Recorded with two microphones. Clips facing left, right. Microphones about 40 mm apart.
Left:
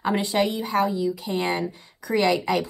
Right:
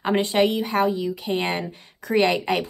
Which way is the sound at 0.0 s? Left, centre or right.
Right.